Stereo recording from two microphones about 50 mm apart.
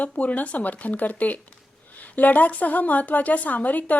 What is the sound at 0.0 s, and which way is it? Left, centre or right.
A woman's voice, left.